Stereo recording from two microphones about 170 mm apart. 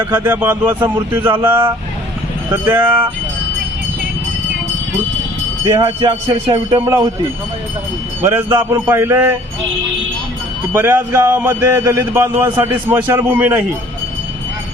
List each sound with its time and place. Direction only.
0.0 s a man's voice: 10° right (ahead or behind)
5.6 s speech: 30° right (ahead or behind)
8.2 s a man's voice: 15° right (ahead or behind)
10.7 s speech: 10° right (ahead or behind)
10.9 s a man's voice: 20° right (ahead or behind)